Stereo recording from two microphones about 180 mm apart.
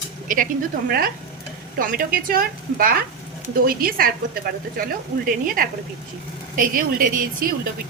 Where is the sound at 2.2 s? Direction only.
55° right (ahead or behind).